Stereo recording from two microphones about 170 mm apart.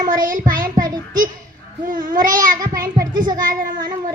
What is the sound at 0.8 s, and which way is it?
Child singing, 20° right (ahead or behind).